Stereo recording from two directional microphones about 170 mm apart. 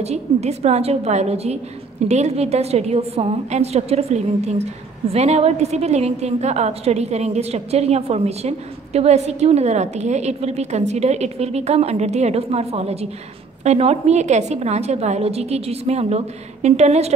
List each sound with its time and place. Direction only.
0.0 s a woman's voice: 40° right (ahead or behind)